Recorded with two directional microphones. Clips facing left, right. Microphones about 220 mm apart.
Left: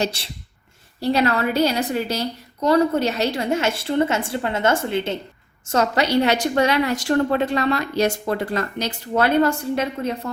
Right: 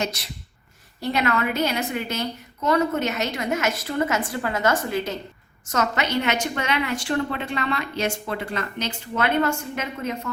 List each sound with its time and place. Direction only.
0.0 s a woman's voice: 30° left (ahead or behind)